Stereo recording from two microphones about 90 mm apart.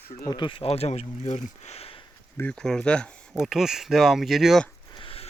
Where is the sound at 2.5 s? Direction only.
10° left (ahead or behind).